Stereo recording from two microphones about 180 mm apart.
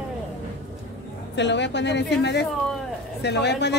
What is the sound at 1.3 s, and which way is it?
Speech, 75° left (ahead or behind).